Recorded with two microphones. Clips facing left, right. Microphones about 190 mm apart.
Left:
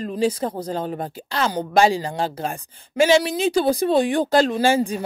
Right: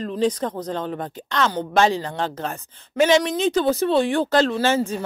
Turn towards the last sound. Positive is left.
turn(degrees=10)  # may be behind; listen again after turning